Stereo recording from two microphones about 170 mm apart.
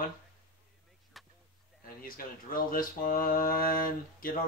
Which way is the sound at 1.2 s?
Centre (ahead or behind).